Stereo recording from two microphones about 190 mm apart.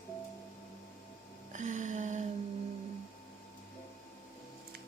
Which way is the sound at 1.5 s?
40° right (ahead or behind).